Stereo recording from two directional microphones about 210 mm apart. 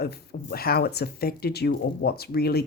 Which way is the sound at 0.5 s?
45° left (ahead or behind).